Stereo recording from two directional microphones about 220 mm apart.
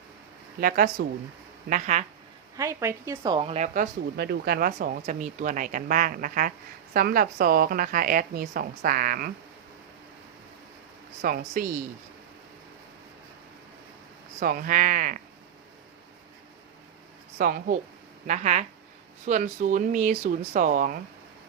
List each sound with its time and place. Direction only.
1.0 s speech: 50° right (ahead or behind)
1.7 s a woman's voice: 35° right (ahead or behind)
2.6 s a woman's voice: 10° right (ahead or behind); by 3.8 s 30° right (ahead or behind)
4.2 s a woman's voice: 45° right (ahead or behind)
11.2 s a woman's voice: 40° right (ahead or behind)
14.3 s a woman's voice: 40° right (ahead or behind)
17.3 s a woman's voice: 40° right (ahead or behind)